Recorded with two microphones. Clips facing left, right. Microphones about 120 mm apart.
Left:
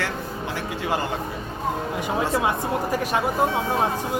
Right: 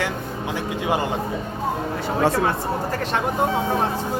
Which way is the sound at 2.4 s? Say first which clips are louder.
Even; 15° left (ahead or behind).